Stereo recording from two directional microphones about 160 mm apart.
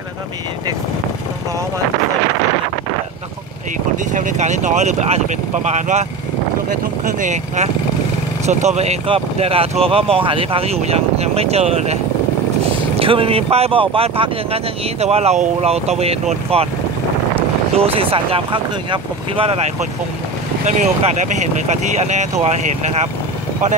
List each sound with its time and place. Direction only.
4.1 s speech: 55° right (ahead or behind)
6.7 s speech: 55° right (ahead or behind); by 16.6 s 40° right (ahead or behind)
17.7 s speech: 35° right (ahead or behind)
20.6 s speech: 50° right (ahead or behind)